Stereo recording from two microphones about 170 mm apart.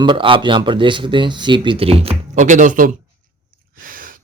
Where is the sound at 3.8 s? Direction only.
55° right (ahead or behind).